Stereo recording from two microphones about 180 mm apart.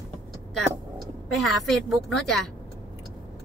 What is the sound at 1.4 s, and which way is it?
A woman's voice, centre (ahead or behind).